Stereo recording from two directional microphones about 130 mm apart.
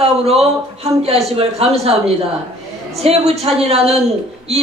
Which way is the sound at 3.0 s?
50° right (ahead or behind).